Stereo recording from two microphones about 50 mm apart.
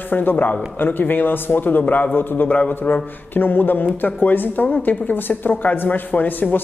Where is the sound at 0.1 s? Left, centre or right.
Left.